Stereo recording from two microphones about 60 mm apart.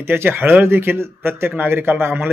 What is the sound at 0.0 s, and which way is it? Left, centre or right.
A man's voice, right.